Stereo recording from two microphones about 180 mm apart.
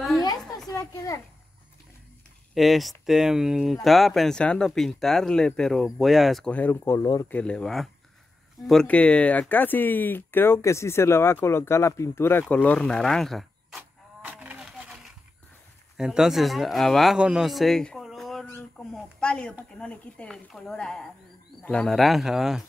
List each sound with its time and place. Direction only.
0.7 s a child's voice: 20° left (ahead or behind)
2.5 s speech: centre (ahead or behind)
14.3 s a sound: 10° right (ahead or behind)
16.0 s a man's voice: 5° right (ahead or behind)